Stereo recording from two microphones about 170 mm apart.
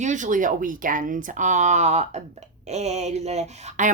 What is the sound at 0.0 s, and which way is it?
A woman's voice, 45° right (ahead or behind).